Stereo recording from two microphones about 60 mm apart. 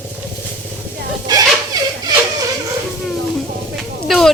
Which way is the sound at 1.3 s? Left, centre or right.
Right.